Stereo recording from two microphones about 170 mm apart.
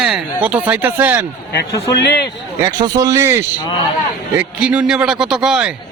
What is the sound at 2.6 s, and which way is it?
A man's voice, 20° right (ahead or behind).